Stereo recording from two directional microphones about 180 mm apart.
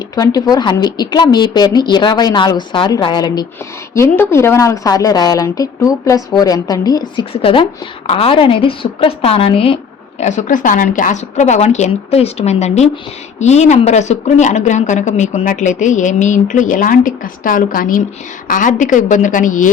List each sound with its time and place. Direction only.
0.2 s a woman's voice: 20° left (ahead or behind)
10.2 s a woman's voice: 40° left (ahead or behind)